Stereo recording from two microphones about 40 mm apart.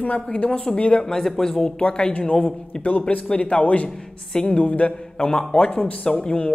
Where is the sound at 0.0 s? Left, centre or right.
Left.